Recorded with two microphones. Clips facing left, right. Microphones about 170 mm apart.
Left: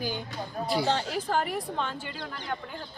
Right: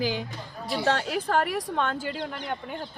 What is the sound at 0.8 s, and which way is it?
A woman's voice, 60° right (ahead or behind).